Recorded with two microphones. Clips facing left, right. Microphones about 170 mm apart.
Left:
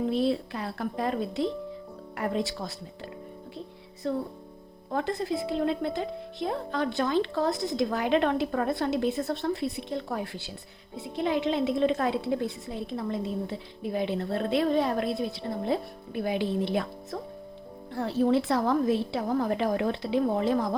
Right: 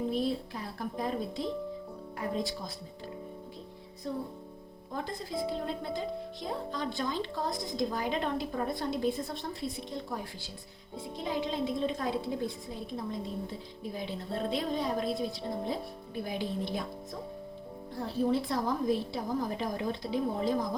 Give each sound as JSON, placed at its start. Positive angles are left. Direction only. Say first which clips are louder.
{"t": 0.0, "sound": "a woman's voice", "louder": "left 5 dB", "side_deg": 70}
{"t": 4.0, "sound": "a woman's voice", "louder": "left 6 dB", "side_deg": 75}